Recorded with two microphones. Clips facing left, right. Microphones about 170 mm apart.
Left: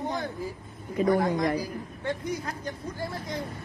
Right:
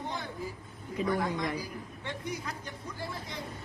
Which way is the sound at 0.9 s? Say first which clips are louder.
Left 7 dB; 40° left (ahead or behind).